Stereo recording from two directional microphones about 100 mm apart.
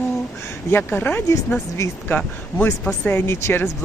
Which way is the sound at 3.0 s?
25° left (ahead or behind).